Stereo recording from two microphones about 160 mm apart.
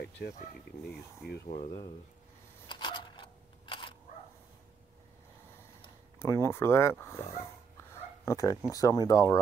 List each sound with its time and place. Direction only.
0.2 s speech: 90° left
0.8 s speech: 75° left (ahead or behind)
2.7 s a sound: 30° left (ahead or behind)
6.1 s speech: 20° left (ahead or behind)
8.3 s speech: 20° left (ahead or behind)